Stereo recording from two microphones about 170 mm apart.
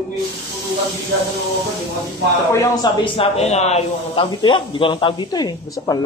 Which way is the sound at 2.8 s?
30° left (ahead or behind).